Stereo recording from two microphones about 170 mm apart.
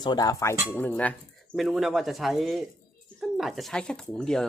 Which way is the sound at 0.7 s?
10° left (ahead or behind).